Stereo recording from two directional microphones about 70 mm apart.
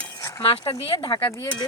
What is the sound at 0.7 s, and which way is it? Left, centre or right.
Speech, left.